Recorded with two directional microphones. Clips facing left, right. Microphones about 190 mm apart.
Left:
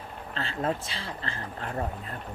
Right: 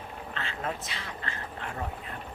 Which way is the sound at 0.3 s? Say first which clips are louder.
Left 6 dB; 35° left (ahead or behind).